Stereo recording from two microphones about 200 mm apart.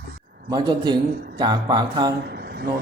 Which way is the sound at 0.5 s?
20° right (ahead or behind).